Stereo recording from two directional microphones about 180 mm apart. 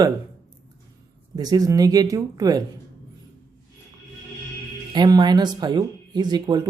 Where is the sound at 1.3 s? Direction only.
20° right (ahead or behind).